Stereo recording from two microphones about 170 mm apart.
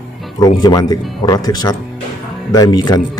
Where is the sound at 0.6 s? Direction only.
25° left (ahead or behind).